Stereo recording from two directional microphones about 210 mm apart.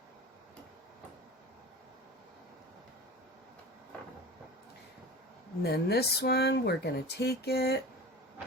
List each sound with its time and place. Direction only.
5.6 s speech: 50° left (ahead or behind)